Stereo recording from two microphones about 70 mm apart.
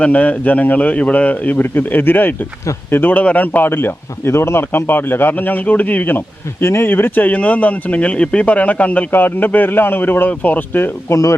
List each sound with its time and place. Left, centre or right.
0.0 s speech: centre
11.1 s speech: left